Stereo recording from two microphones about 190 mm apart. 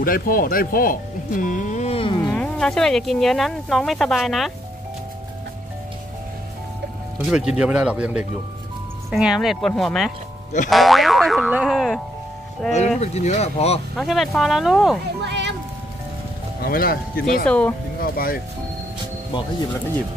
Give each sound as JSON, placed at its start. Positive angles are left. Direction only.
{"t": 0.0, "sound": "speech", "side_deg": 50}
{"t": 2.2, "sound": "speech", "side_deg": 5}
{"t": 7.2, "sound": "speech", "side_deg": -5}
{"t": 10.7, "sound": "boing", "side_deg": 0}
{"t": 12.6, "sound": "speech", "side_deg": 0}
{"t": 13.0, "sound": "speech", "side_deg": 35}
{"t": 13.9, "sound": "speech", "side_deg": 0}
{"t": 15.2, "sound": "music", "side_deg": -65}
{"t": 16.6, "sound": "speech", "side_deg": 50}
{"t": 17.5, "sound": "speech", "side_deg": 5}
{"t": 18.0, "sound": "speech", "side_deg": 50}